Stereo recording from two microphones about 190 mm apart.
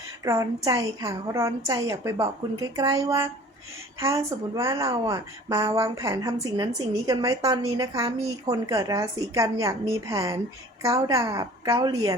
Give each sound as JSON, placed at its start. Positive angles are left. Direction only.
{"t": 0.3, "sound": "a woman's voice", "side_deg": -15}